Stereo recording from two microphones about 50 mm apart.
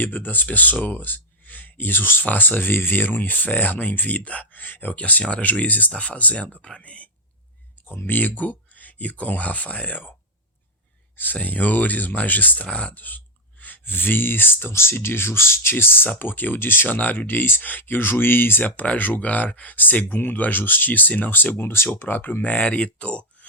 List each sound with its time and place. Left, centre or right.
0.0 s speech: left
8.0 s speech: left
11.3 s speech: left
12.7 s speech: left
13.0 s speech: left
14.7 s speech: left
18.8 s speech: left
21.5 s speech: left
22.5 s speech: left